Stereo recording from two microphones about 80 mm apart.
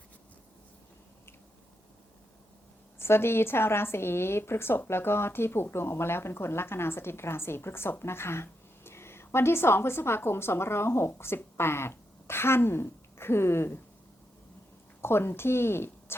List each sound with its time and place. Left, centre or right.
3.0 s a woman's voice: left
15.0 s a woman's voice: left